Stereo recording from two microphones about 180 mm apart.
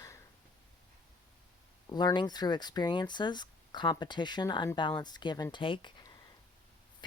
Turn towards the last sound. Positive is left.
turn(degrees=25)  # may be behind; listen again after turning